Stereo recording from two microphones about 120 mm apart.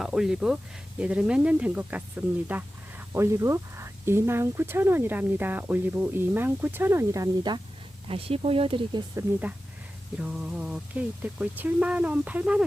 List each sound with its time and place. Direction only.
0.0 s speech: 5° right (ahead or behind); by 7.6 s 35° right (ahead or behind)
8.0 s speech: 50° right (ahead or behind)
10.2 s speech: 10° right (ahead or behind)